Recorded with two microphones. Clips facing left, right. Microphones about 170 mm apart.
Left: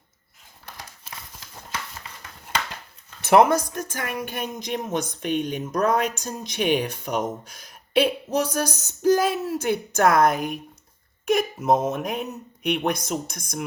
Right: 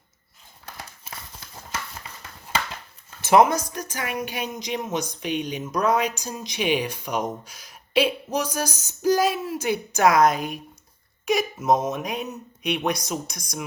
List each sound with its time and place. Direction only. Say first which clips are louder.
3.2 s speech: left 1 dB; 60° left (ahead or behind)